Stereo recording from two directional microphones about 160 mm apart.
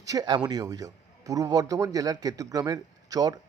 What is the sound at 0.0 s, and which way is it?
Speech, 25° right (ahead or behind).